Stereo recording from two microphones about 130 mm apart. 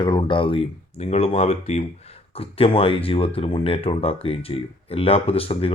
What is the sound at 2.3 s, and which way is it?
Speech, 45° left (ahead or behind).